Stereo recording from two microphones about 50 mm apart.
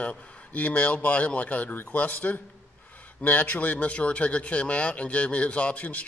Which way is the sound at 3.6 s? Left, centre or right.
Left.